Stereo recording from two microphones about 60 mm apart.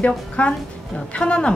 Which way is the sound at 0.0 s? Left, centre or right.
Left.